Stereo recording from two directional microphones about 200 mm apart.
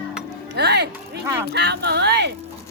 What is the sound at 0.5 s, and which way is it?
Music, 55° right (ahead or behind).